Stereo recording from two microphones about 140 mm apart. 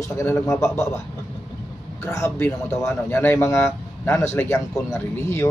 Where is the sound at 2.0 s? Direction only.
20° left (ahead or behind).